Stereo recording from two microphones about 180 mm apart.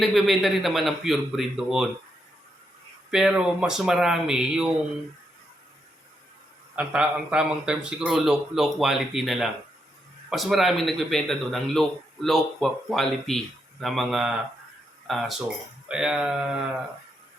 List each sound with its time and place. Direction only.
0.0 s a man's voice: centre (ahead or behind)
3.1 s a man's voice: 5° right (ahead or behind)
6.7 s a man's voice: 5° right (ahead or behind)